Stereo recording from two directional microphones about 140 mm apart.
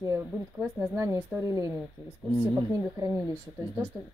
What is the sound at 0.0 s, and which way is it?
Speech, 20° right (ahead or behind).